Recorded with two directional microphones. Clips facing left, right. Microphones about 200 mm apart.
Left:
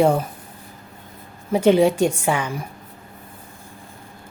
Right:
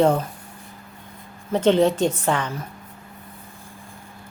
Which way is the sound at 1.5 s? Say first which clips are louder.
Left 2 dB; 10° left (ahead or behind).